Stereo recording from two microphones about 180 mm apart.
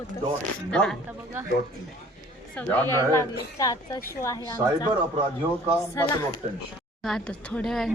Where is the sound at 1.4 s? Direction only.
15° right (ahead or behind).